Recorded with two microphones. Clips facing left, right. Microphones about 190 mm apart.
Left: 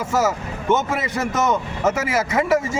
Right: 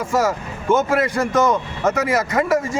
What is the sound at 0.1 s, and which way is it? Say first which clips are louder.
Speech: right 1 dB; 5° left (ahead or behind).